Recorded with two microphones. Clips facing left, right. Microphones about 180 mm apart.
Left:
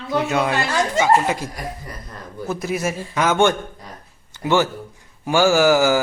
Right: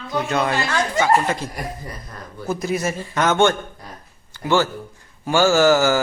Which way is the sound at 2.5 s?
5° left (ahead or behind).